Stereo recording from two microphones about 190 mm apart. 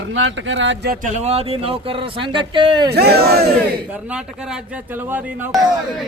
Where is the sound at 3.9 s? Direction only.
10° right (ahead or behind).